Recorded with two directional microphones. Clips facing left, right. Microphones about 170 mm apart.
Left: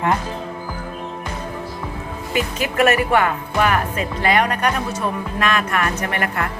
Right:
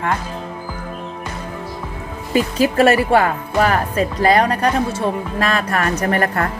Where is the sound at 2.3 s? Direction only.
35° right (ahead or behind).